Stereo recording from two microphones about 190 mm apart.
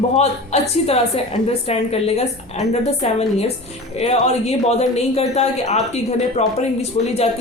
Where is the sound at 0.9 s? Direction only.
30° left (ahead or behind).